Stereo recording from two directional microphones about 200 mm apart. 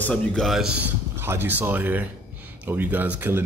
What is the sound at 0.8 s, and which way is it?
A man's voice, 10° right (ahead or behind).